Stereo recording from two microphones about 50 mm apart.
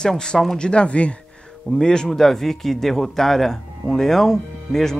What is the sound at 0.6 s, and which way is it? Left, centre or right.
Speech, left.